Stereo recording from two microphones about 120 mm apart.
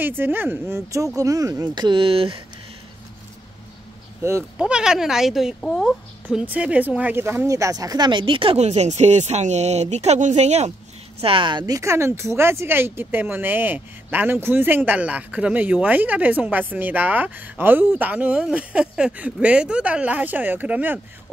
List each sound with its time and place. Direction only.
0.0 s speech: 15° right (ahead or behind); by 2.4 s 50° right (ahead or behind)
4.2 s speech: 20° right (ahead or behind)
4.6 s a child's voice: 10° right (ahead or behind)
6.2 s speech: 15° right (ahead or behind); by 8.5 s 45° right (ahead or behind)
8.5 s speech: 70° right (ahead or behind)
11.1 s speech: 50° right (ahead or behind); by 21.0 s 15° right (ahead or behind)